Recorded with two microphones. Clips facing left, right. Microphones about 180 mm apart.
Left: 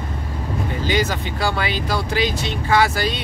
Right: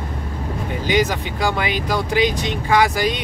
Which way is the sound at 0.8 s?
15° right (ahead or behind).